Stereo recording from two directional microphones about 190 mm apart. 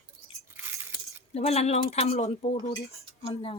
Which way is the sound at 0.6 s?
10° right (ahead or behind).